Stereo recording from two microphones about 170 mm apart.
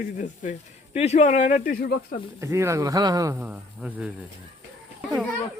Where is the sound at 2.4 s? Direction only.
15° right (ahead or behind).